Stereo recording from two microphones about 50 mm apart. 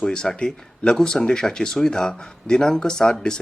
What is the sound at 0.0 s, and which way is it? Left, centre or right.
Speech, centre.